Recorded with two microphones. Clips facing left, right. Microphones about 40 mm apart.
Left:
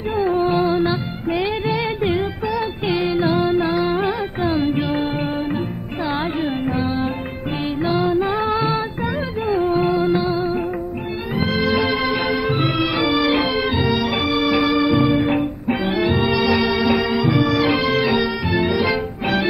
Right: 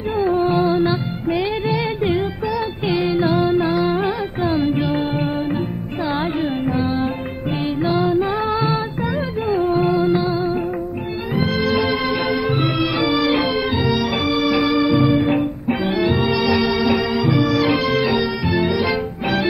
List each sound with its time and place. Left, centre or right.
0.2 s music: centre
7.8 s music: centre
14.5 s organ: centre
15.0 s music: centre
15.9 s music: left
16.2 s music: centre